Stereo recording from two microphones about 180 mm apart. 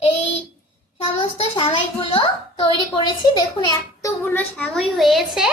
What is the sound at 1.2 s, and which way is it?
A child's voice, 30° left (ahead or behind).